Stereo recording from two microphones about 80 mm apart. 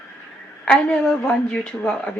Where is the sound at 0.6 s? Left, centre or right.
Centre.